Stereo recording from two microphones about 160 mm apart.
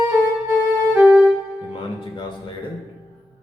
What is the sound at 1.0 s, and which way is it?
Music, 10° right (ahead or behind).